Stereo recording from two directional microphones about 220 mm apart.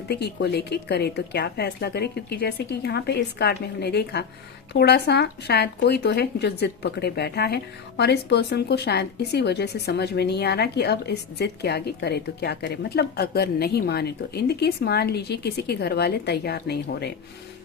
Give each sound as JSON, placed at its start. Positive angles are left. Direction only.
{"t": 0.1, "sound": "speech", "side_deg": 50}